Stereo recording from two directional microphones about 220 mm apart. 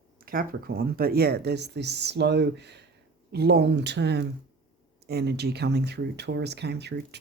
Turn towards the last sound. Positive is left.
turn(degrees=-50)  # may be behind; listen again after turning